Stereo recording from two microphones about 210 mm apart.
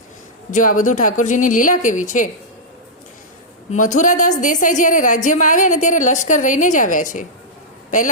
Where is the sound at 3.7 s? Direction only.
35° left (ahead or behind).